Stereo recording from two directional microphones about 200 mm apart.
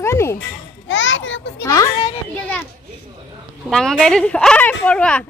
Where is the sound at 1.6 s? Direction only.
15° left (ahead or behind).